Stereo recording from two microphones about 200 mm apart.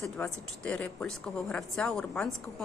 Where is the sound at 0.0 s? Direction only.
5° left (ahead or behind).